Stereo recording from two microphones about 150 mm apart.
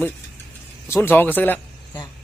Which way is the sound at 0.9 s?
15° left (ahead or behind).